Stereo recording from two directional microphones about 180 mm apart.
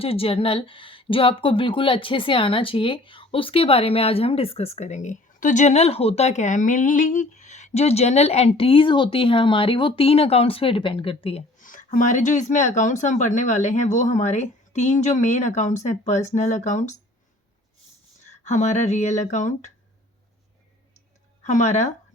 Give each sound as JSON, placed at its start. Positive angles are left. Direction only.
{"t": 0.0, "sound": "speech", "side_deg": 30}
{"t": 11.6, "sound": "speech", "side_deg": 50}
{"t": 18.4, "sound": "speech", "side_deg": 40}
{"t": 21.4, "sound": "speech", "side_deg": 40}